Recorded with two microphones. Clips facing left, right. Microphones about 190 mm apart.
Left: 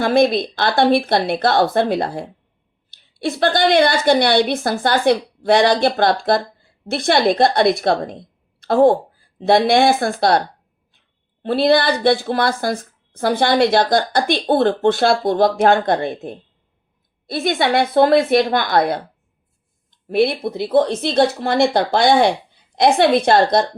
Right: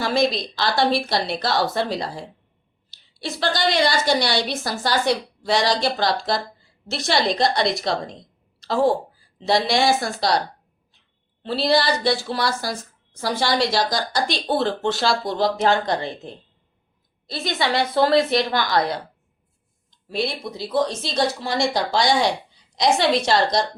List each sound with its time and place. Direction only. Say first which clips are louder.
0.0 s a woman's voice: left 6 dB; 55° left (ahead or behind)
11.4 s a woman's voice: left 5 dB; 55° left (ahead or behind)